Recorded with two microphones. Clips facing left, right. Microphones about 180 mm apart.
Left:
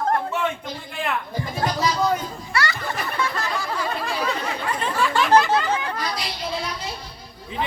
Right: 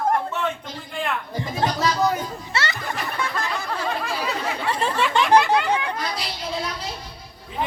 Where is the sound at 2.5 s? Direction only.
25° right (ahead or behind).